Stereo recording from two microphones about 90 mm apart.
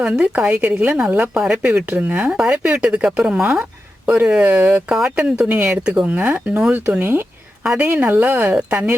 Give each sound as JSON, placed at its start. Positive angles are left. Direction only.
{"t": 0.0, "sound": "speech", "side_deg": -10}